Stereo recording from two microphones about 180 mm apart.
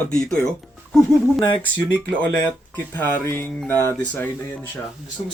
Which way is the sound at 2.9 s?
10° left (ahead or behind).